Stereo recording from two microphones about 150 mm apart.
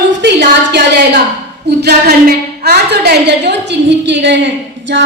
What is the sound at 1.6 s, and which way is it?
A woman's voice, 90° right.